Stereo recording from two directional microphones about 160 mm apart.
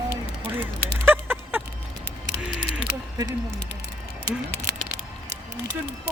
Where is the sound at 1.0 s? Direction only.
15° right (ahead or behind).